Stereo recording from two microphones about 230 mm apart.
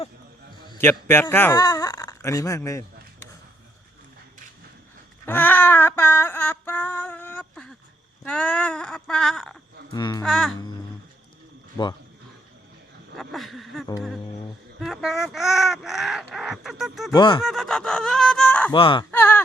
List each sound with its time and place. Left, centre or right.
0.6 s a sound: centre
0.9 s speech: centre
5.2 s a sound: centre
8.2 s speech: centre
9.9 s speech: centre
10.2 s speech: centre
13.1 s speech: centre
17.1 s speech: centre
17.4 s speech: centre
18.7 s speech: left
19.1 s speech: centre